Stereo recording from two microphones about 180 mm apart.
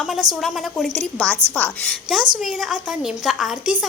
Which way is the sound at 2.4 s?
Centre (ahead or behind).